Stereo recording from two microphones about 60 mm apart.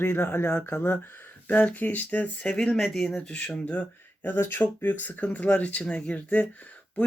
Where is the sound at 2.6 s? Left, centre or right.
Centre.